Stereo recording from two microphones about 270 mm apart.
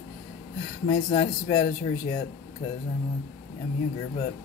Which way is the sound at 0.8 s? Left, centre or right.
Centre.